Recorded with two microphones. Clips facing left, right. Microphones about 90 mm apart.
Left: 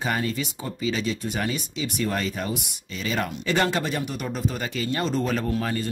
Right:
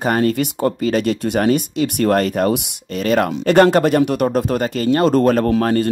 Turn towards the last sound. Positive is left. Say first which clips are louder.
# right 11 dB
turn(degrees=-55)  # may be behind; listen again after turning